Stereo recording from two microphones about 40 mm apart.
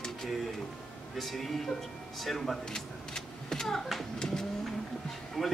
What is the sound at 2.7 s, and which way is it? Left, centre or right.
Vehicle, centre.